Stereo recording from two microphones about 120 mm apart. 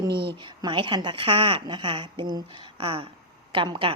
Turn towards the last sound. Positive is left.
turn(degrees=-45)  # may be behind; listen again after turning